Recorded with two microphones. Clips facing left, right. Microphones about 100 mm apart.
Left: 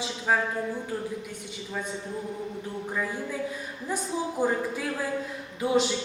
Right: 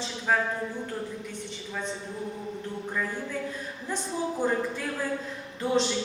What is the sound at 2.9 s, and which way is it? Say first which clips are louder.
A woman's voice: left 1 dB; 10° left (ahead or behind).